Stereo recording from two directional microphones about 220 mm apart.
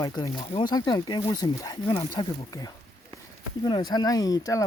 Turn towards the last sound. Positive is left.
turn(degrees=15)  # may be behind; listen again after turning